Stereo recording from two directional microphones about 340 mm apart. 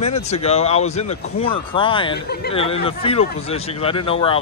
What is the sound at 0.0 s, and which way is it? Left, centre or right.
A man's voice, centre.